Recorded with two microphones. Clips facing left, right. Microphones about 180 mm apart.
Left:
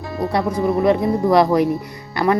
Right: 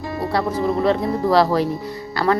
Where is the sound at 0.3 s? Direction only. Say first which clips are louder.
Left 2 dB; 15° left (ahead or behind).